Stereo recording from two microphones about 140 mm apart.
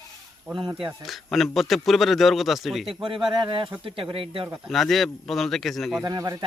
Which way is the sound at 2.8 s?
40° right (ahead or behind).